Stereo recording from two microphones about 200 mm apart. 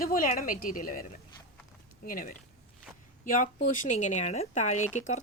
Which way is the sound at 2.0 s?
45° left (ahead or behind).